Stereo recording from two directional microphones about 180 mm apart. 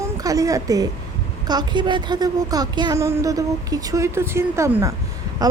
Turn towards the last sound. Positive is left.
turn(degrees=-20)  # may be behind; listen again after turning